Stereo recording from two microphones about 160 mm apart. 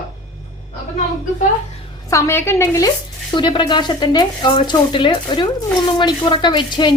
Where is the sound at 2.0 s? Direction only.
15° left (ahead or behind).